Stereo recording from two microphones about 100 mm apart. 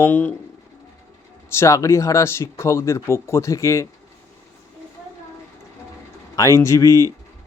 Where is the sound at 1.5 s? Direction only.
30° left (ahead or behind).